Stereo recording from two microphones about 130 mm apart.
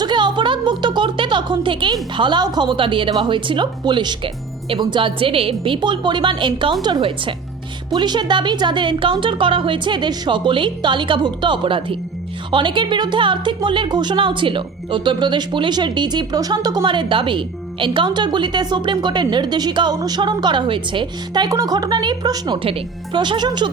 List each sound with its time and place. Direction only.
0.0 s speech: 35° right (ahead or behind)